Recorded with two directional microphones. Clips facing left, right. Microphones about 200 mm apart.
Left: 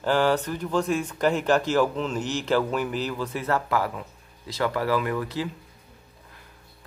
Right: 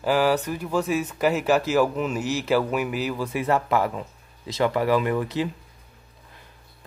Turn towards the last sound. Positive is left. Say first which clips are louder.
# right 3 dB
turn(degrees=-20)  # may be behind; listen again after turning